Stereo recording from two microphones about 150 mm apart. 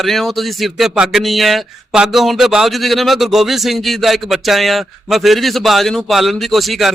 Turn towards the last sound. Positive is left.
turn(degrees=0)  # may be behind; listen again after turning